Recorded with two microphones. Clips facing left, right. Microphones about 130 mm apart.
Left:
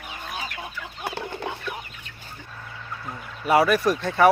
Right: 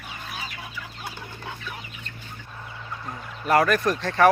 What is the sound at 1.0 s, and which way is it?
Chicken, 70° left (ahead or behind).